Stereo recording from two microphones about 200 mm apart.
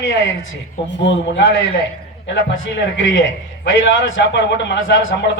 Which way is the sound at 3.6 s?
60° left (ahead or behind).